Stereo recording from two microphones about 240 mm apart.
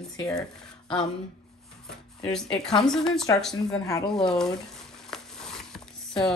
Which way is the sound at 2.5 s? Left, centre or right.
Centre.